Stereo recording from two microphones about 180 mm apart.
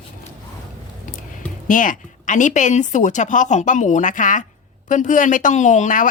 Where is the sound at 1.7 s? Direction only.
45° left (ahead or behind).